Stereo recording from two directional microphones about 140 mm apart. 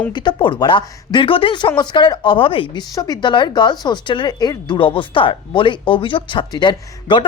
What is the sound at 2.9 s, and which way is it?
Speech, 30° left (ahead or behind).